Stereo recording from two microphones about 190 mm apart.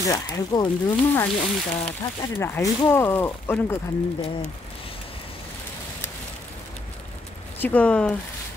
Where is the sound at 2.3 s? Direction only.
10° left (ahead or behind).